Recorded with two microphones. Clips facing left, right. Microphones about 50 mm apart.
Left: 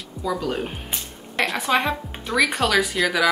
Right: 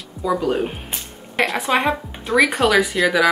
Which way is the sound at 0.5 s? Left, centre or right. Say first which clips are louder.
Right 5 dB; centre.